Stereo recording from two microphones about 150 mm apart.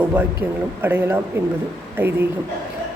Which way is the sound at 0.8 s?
15° right (ahead or behind).